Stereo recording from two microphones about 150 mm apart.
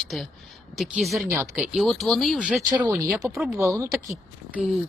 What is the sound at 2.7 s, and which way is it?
Speech, 10° right (ahead or behind).